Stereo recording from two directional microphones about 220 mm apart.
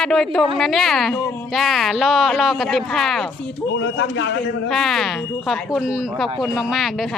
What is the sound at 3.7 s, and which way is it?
Speech, 60° left (ahead or behind).